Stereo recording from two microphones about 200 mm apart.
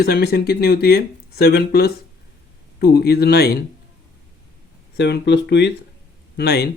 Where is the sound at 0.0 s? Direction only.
50° left (ahead or behind).